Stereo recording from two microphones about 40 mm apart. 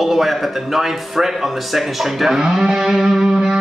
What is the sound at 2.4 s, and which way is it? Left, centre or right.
Music, centre.